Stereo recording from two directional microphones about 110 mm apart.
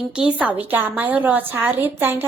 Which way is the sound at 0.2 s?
10° right (ahead or behind).